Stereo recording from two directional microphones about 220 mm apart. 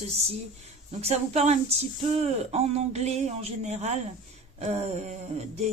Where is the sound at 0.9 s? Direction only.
30° right (ahead or behind).